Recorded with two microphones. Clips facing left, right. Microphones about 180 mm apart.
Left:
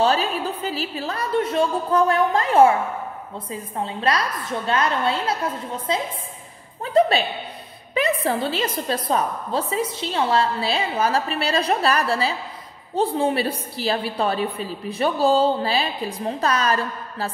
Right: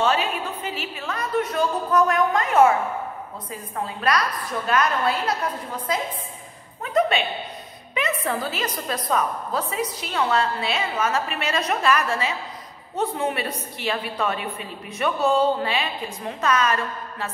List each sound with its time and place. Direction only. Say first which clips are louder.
0.0 s a woman's voice: left 2 dB; 35° left (ahead or behind)
3.7 s a woman's voice: left 1 dB; 25° left (ahead or behind)